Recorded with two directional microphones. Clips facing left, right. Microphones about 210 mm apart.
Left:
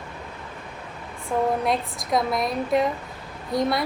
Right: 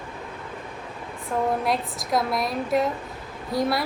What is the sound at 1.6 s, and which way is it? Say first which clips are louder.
A woman's voice: left 1 dB; centre (ahead or behind).